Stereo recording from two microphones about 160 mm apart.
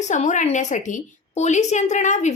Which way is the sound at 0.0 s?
50° left (ahead or behind).